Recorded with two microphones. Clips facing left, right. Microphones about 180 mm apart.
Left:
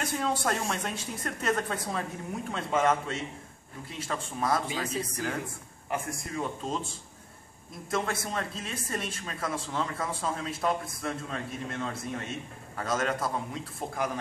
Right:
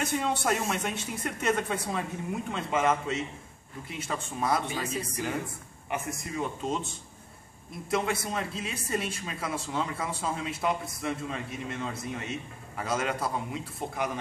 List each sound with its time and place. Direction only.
0.0 s a man's voice: 5° right (ahead or behind)
7.9 s a man's voice: 5° right (ahead or behind)